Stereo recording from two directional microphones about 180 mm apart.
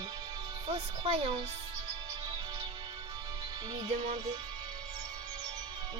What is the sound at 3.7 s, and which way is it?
Speech, 30° right (ahead or behind).